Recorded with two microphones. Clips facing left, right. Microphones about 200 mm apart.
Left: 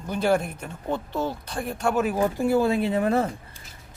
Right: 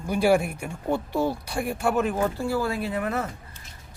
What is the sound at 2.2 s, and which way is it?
Speech, 20° left (ahead or behind).